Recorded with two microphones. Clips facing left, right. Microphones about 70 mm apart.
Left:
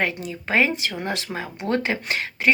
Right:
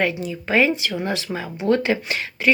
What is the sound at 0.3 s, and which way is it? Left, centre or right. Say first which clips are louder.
Speech: right 2 dB; left.